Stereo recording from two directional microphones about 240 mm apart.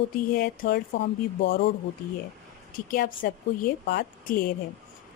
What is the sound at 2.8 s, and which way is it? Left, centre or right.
Speech, left.